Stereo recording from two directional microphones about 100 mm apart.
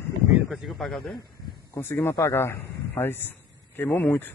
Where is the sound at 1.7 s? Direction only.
25° left (ahead or behind).